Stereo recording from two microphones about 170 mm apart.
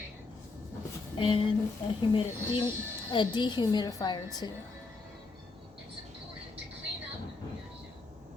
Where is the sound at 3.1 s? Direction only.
25° left (ahead or behind).